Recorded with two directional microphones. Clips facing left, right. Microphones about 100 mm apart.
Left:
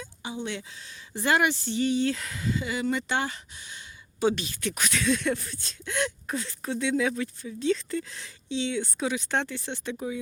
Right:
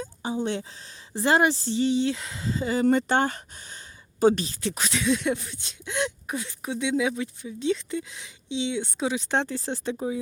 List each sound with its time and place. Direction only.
0.0 s a sound: 40° right (ahead or behind)
1.1 s speech: 30° right (ahead or behind)
4.6 s speech: 25° right (ahead or behind)